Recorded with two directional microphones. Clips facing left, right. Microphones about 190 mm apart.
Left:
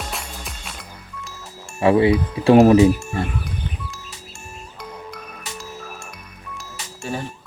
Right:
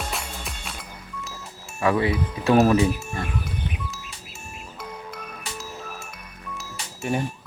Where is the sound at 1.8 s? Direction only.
25° left (ahead or behind).